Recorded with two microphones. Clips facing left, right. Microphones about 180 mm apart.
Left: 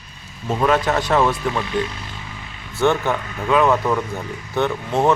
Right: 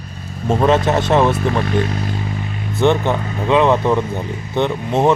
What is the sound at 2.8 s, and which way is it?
Speech, 20° right (ahead or behind).